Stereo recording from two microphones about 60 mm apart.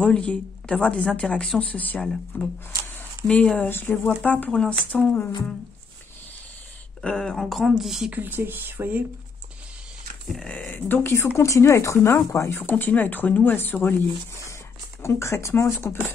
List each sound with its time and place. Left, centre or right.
0.0 s a woman's voice: centre
1.6 s a woman's voice: left
3.6 s speech: left
4.5 s a woman's voice: centre
7.0 s speech: centre
8.1 s speech: right
10.7 s speech: left
15.0 s speech: left